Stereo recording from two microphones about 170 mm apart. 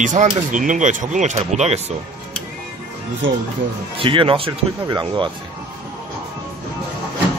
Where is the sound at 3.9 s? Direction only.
30° right (ahead or behind).